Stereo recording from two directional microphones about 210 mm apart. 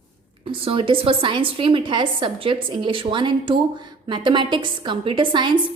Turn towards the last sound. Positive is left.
turn(degrees=-20)  # may be behind; listen again after turning